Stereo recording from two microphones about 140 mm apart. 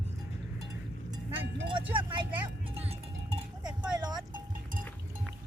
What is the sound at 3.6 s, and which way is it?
Music, 30° right (ahead or behind).